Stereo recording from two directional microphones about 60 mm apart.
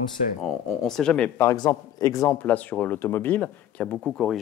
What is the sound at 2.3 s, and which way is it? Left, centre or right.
Speech, left.